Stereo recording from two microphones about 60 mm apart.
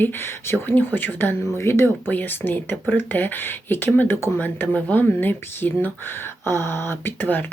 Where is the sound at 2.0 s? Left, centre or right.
Left.